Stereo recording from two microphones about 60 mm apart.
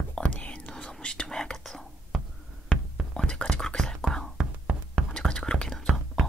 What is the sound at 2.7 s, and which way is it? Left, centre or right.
Whispering, centre.